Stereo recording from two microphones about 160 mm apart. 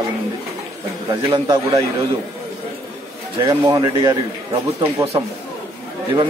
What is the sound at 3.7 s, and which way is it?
Speech, 25° right (ahead or behind).